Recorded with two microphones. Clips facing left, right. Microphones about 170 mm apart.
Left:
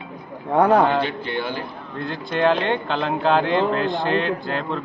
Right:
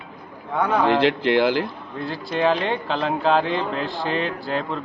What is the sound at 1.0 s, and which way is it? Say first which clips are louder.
Speech: right 7 dB; 90° right.